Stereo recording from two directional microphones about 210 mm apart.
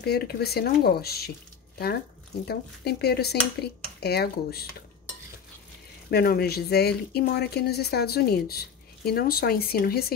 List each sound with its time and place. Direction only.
0.0 s speech: 50° left (ahead or behind)
2.4 s speech: 50° left (ahead or behind)
6.0 s speech: 45° left (ahead or behind)